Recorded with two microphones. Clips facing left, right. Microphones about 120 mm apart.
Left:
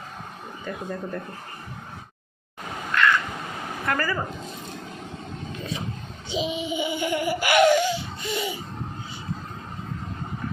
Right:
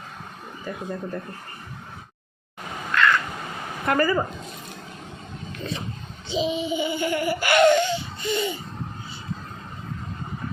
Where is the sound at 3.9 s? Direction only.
20° right (ahead or behind).